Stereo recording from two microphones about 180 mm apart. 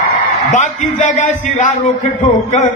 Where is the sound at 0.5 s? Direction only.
40° left (ahead or behind).